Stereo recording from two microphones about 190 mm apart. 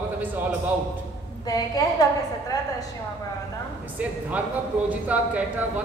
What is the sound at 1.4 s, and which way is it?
A woman's voice, 20° left (ahead or behind).